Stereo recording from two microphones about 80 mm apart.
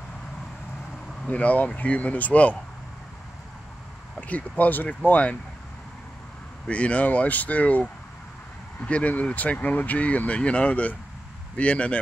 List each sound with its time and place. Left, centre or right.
1.2 s speech: centre
4.2 s speech: centre
6.7 s speech: centre
8.8 s speech: centre